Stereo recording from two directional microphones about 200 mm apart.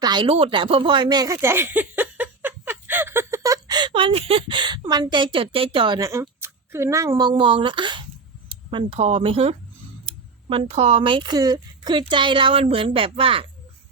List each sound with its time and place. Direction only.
0.0 s speech: 25° right (ahead or behind)